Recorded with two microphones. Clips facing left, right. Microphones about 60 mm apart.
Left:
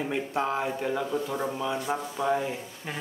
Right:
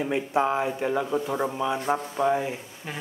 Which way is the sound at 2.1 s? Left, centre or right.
Centre.